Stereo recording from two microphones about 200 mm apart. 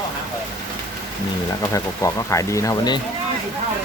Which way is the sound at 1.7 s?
15° left (ahead or behind).